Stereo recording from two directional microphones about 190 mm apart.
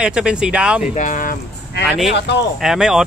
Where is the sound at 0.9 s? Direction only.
40° left (ahead or behind).